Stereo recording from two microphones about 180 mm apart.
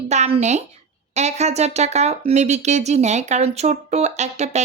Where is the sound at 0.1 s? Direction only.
40° right (ahead or behind).